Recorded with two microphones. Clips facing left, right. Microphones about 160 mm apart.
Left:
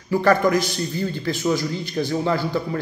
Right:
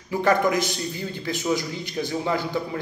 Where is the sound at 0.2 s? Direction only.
20° right (ahead or behind).